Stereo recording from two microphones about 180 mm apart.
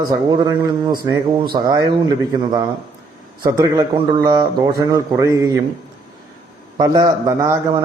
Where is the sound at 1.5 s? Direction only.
25° right (ahead or behind).